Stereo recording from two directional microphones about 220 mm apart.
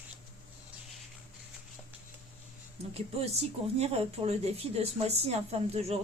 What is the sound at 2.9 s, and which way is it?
Speech, 25° right (ahead or behind).